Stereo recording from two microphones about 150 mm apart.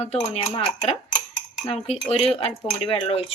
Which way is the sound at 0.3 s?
35° left (ahead or behind).